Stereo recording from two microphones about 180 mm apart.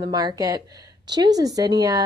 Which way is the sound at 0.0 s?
20° right (ahead or behind).